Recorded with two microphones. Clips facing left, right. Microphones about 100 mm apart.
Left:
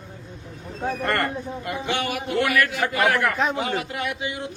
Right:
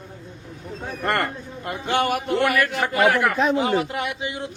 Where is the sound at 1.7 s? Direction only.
45° right (ahead or behind).